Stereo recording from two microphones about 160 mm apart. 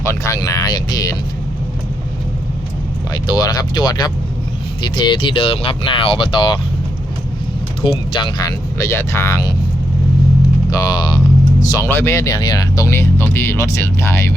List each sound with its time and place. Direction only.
0.0 s speech: 20° left (ahead or behind)
3.2 s speech: 25° left (ahead or behind)
7.8 s speech: 35° left (ahead or behind)
10.7 s speech: 20° left (ahead or behind)